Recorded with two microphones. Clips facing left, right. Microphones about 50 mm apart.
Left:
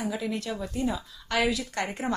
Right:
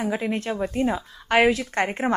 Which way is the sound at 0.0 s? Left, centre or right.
Right.